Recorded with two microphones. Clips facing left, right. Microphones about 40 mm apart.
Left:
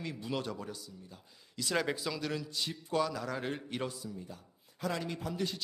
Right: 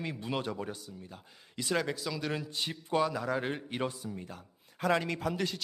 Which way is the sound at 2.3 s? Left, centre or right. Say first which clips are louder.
Right 2 dB; right.